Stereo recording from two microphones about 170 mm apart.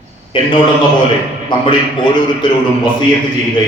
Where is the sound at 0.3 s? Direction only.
30° left (ahead or behind).